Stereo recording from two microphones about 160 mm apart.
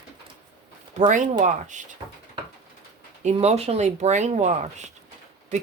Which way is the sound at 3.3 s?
40° right (ahead or behind).